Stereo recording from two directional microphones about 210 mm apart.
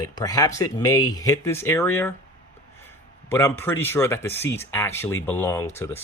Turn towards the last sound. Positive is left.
turn(degrees=10)  # may be behind; listen again after turning